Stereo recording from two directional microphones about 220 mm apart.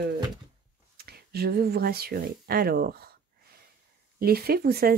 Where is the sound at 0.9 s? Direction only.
45° right (ahead or behind).